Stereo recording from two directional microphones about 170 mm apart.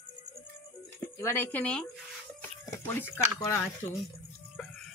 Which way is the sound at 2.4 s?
15° left (ahead or behind).